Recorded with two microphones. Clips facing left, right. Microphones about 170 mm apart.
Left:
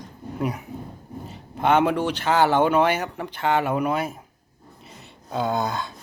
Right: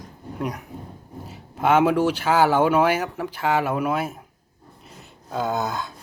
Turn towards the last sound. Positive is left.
turn(degrees=-5)  # may be behind; listen again after turning